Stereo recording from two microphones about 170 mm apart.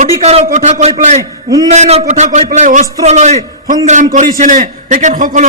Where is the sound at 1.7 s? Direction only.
40° right (ahead or behind).